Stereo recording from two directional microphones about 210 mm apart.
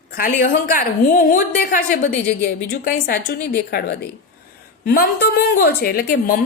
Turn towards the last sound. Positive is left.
turn(degrees=45)  # may be behind; listen again after turning